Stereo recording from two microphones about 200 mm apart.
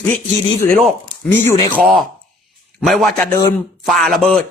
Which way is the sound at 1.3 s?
15° left (ahead or behind).